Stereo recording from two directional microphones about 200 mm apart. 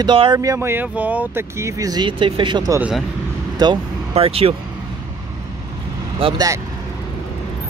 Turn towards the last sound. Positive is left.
turn(degrees=-20)  # may be behind; listen again after turning